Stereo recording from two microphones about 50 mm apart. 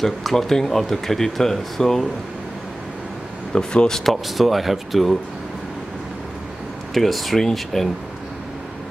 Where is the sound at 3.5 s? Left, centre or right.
Centre.